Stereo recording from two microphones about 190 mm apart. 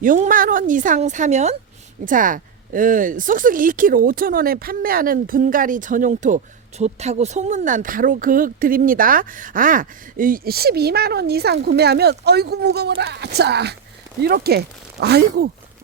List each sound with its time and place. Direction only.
0.0 s speech: 45° right (ahead or behind)